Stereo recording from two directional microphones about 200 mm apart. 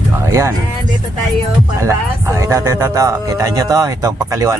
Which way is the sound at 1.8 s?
15° right (ahead or behind).